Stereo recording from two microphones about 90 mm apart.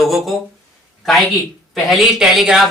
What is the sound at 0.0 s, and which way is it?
Speech, centre (ahead or behind).